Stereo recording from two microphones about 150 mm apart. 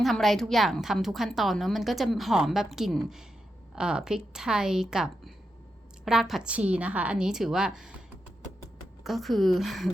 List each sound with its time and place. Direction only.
0.0 s a woman's voice: centre (ahead or behind)
9.0 s a woman's voice: centre (ahead or behind)